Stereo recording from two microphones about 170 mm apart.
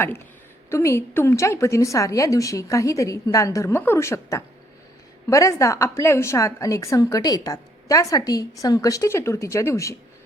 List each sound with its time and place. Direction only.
0.7 s a woman's voice: 15° left (ahead or behind)